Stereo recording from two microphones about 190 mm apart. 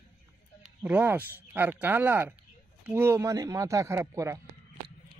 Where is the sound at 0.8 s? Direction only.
10° right (ahead or behind).